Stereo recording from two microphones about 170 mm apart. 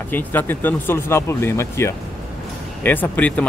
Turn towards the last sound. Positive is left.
turn(degrees=10)  # may be behind; listen again after turning